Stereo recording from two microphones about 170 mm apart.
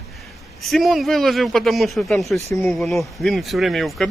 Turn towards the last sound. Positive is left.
turn(degrees=0)  # may be behind; listen again after turning